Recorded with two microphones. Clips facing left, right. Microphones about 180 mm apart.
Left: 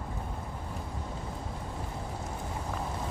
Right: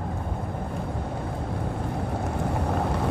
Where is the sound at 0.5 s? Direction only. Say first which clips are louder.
Right 8 dB; 60° right (ahead or behind).